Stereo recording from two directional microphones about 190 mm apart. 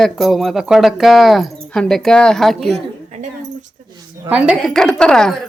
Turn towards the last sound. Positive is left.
turn(degrees=5)  # may be behind; listen again after turning